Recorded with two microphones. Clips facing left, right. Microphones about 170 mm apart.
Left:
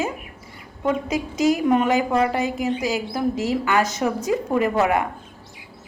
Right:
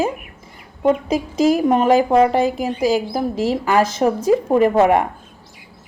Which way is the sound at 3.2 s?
45° right (ahead or behind).